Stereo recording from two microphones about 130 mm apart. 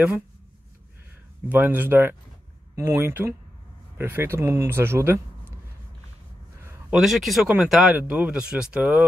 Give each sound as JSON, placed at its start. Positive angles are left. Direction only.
{"t": 1.5, "sound": "speech", "side_deg": -15}
{"t": 6.9, "sound": "speech", "side_deg": 0}